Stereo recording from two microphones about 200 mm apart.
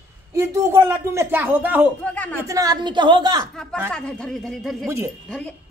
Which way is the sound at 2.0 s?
5° left (ahead or behind).